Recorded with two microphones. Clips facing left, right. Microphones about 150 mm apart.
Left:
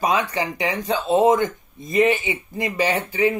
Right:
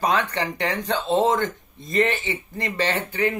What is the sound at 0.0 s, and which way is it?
Speech, 10° left (ahead or behind).